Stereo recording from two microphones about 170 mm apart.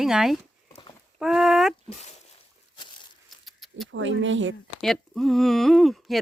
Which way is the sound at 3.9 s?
90° right.